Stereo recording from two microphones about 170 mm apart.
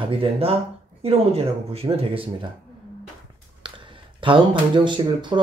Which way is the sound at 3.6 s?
30° right (ahead or behind).